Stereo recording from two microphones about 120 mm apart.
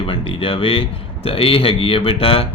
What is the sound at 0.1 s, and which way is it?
Speech, 50° left (ahead or behind).